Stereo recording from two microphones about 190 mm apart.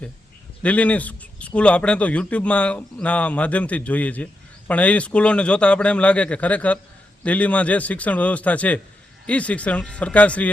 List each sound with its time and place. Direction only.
0.6 s speech: 5° left (ahead or behind)